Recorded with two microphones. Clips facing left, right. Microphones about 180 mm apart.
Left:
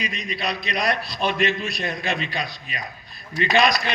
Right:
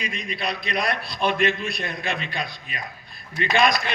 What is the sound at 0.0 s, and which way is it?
A man's voice, 55° right (ahead or behind).